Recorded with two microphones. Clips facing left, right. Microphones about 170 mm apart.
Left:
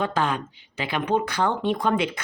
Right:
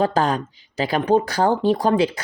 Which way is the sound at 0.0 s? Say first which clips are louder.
Right 5 dB; 40° right (ahead or behind).